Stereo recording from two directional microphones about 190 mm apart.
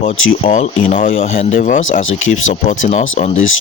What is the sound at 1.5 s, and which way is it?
Speech, 45° left (ahead or behind).